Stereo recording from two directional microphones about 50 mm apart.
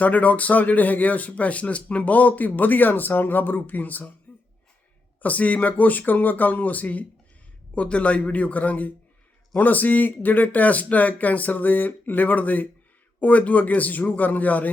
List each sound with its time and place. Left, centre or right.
0.0 s speech: left
5.2 s speech: left